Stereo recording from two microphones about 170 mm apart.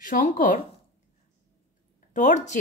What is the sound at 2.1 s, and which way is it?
Speech, 45° left (ahead or behind).